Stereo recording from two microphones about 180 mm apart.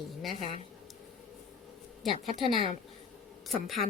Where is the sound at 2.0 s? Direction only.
Centre (ahead or behind).